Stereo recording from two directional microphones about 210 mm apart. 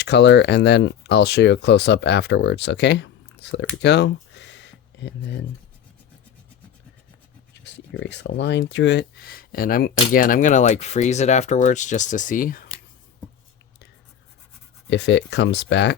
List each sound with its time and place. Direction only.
0.0 s speech: 55° left (ahead or behind)
3.8 s a sound: 55° left (ahead or behind)
7.5 s speech: 60° left (ahead or behind); by 12.6 s 40° left (ahead or behind)
14.8 s speech: 55° left (ahead or behind)